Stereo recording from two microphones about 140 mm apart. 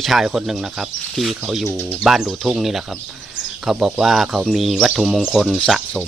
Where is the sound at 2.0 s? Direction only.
5° right (ahead or behind).